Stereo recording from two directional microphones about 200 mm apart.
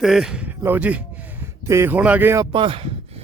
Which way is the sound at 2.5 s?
25° right (ahead or behind).